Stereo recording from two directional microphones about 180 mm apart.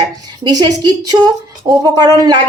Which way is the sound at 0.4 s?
20° right (ahead or behind).